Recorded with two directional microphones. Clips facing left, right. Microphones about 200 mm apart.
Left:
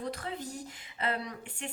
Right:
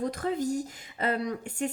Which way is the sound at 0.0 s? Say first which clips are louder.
Right 8 dB; 45° right (ahead or behind).